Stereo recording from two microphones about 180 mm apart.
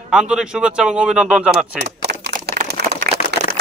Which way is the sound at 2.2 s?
60° right (ahead or behind).